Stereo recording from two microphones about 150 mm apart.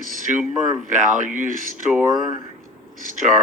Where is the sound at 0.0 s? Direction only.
60° right (ahead or behind).